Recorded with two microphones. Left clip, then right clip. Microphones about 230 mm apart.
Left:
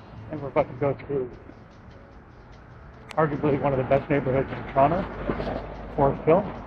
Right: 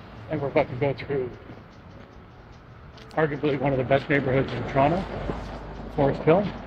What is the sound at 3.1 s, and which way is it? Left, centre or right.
Speech, right.